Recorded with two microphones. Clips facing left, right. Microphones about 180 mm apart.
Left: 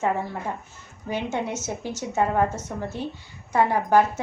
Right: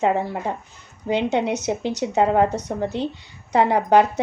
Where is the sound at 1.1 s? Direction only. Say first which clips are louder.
Right 7 dB; 70° right (ahead or behind).